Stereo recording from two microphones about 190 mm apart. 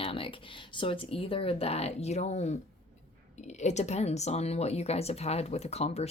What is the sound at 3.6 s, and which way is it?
Speech, 35° left (ahead or behind).